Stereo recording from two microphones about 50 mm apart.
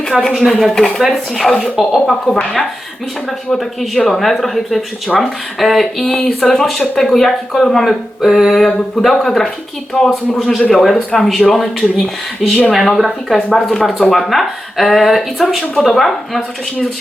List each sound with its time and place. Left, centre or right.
0.2 s speech: centre
2.3 s speech: centre
5.0 s speech: centre
5.5 s speech: centre